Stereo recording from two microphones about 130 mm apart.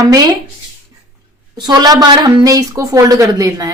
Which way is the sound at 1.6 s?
30° right (ahead or behind).